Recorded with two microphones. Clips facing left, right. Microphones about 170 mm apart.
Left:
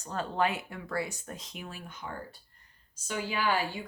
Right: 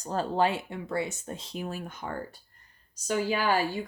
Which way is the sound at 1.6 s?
45° right (ahead or behind).